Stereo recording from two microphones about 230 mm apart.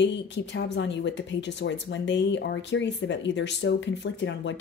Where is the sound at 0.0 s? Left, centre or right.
Left.